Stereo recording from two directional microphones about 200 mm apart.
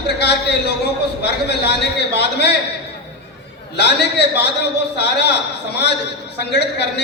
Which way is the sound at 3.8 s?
55° left (ahead or behind).